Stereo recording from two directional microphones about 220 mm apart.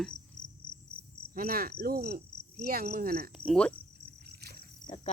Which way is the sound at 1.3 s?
40° right (ahead or behind).